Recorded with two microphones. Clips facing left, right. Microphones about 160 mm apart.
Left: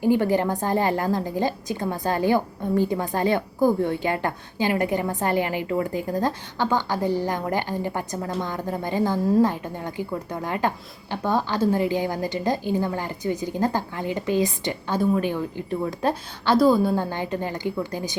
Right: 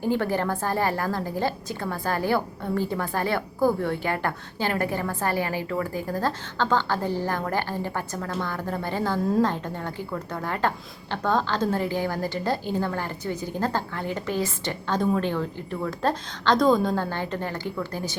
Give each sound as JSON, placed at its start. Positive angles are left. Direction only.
{"t": 0.0, "sound": "a woman's voice", "side_deg": 15}